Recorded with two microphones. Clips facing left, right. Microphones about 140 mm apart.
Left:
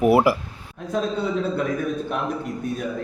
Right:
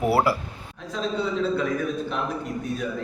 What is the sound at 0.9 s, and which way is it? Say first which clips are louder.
Speech: left 5 dB; 50° left (ahead or behind).